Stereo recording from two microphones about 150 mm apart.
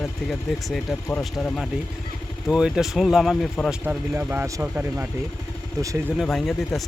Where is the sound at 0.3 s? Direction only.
Centre (ahead or behind).